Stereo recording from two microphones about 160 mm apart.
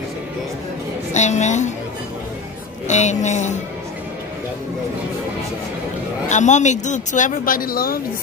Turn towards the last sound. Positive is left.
turn(degrees=65)  # may be behind; listen again after turning